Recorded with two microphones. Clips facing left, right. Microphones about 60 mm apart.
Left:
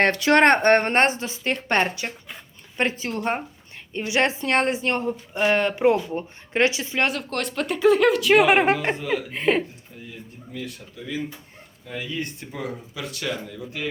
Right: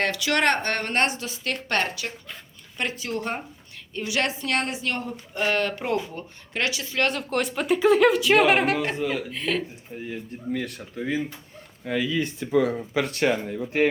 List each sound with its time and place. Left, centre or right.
0.0 s speech: left
7.1 s speech: centre
8.4 s speech: left
9.9 s speech: right
11.9 s speech: right
13.1 s speech: right